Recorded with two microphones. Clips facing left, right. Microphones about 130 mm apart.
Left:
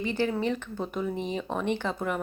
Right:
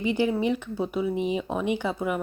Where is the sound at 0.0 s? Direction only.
15° right (ahead or behind).